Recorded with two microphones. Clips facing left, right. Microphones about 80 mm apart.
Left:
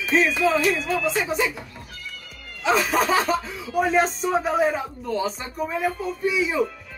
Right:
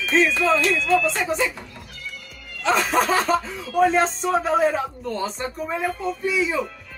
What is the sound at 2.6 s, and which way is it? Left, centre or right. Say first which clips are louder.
Speech: right 1 dB; centre.